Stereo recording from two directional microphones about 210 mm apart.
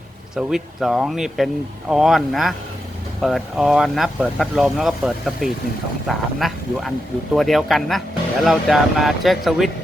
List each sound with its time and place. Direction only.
0.3 s speech: centre (ahead or behind)